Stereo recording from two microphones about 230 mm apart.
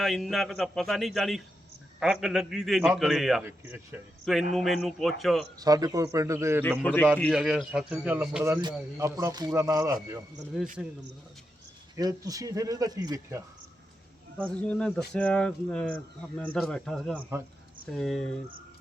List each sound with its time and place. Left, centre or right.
0.0 s speech: centre
4.5 s speech: centre
5.5 s a man's voice: centre
6.6 s a man's voice: centre
11.9 s a man's voice: centre
14.4 s speech: centre